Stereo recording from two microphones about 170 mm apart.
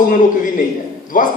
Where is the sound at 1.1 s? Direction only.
50° left (ahead or behind).